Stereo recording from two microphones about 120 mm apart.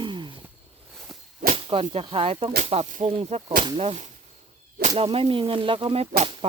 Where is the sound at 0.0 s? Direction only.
40° right (ahead or behind).